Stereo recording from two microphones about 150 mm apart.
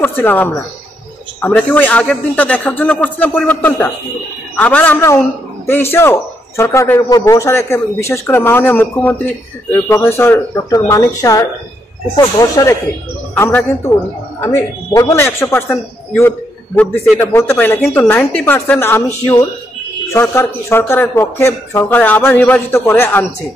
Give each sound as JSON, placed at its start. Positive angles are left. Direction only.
{"t": 0.0, "sound": "a man's voice", "side_deg": 10}
{"t": 13.3, "sound": "a man's voice", "side_deg": 10}
{"t": 20.1, "sound": "a man's voice", "side_deg": 15}